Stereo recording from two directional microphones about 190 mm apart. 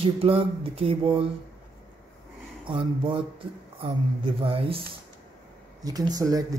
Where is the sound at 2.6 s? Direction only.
25° right (ahead or behind).